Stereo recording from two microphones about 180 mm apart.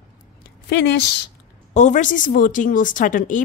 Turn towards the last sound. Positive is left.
turn(degrees=45)  # may be behind; listen again after turning